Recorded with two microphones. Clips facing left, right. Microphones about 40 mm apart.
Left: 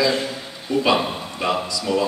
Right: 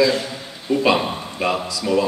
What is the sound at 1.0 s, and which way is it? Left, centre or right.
Speech, centre.